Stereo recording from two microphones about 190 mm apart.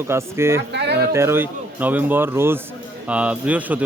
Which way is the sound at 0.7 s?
65° right (ahead or behind).